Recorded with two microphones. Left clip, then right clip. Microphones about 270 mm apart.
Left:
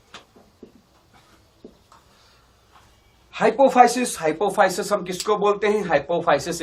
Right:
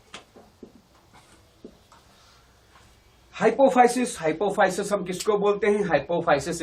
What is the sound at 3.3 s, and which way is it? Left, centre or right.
Speech, left.